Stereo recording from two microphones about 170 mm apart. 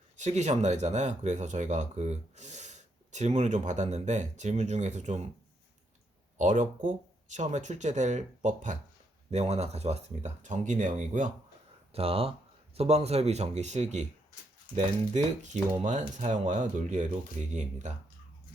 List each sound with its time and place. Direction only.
0.2 s speech: 45° right (ahead or behind)
6.3 s speech: 45° right (ahead or behind)
11.9 s speech: 35° right (ahead or behind)